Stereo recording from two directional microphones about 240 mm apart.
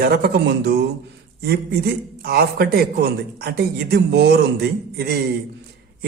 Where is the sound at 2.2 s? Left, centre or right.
Right.